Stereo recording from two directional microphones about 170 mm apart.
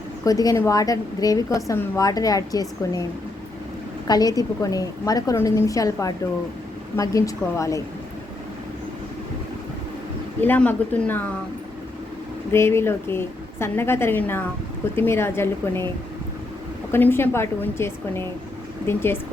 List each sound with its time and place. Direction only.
0.3 s a woman's voice: 20° left (ahead or behind)
4.0 s a woman's voice: 20° left (ahead or behind)
10.4 s a woman's voice: 10° left (ahead or behind)
12.5 s a woman's voice: 15° left (ahead or behind)
16.9 s a woman's voice: 15° left (ahead or behind)